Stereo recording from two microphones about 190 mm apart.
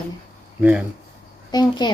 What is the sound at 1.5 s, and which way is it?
Speech, 20° left (ahead or behind).